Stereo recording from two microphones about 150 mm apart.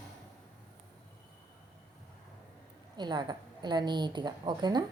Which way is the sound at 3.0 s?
30° right (ahead or behind).